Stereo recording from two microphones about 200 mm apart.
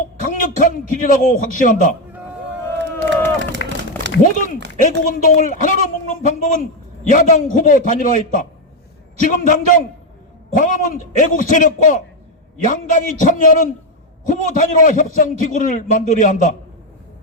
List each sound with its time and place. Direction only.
0.2 s a man's voice: 40° left (ahead or behind)
2.7 s crowd: 60° right (ahead or behind)
3.6 s a sound: 60° left (ahead or behind)
4.8 s a man's voice: 40° left (ahead or behind)